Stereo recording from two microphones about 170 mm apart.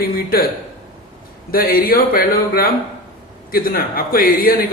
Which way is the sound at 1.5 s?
60° left (ahead or behind).